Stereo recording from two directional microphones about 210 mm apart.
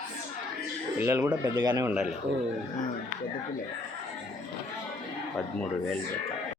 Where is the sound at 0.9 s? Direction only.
10° right (ahead or behind).